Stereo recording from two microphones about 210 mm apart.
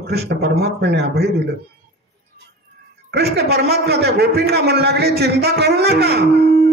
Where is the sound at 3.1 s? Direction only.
50° right (ahead or behind).